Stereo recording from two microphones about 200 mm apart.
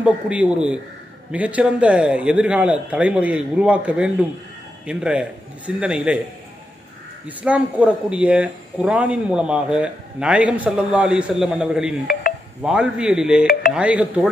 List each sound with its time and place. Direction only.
0.0 s a man's voice: 5° right (ahead or behind)
7.2 s speech: 5° right (ahead or behind)
13.5 s speech: 50° left (ahead or behind)
13.7 s a man's voice: 5° right (ahead or behind)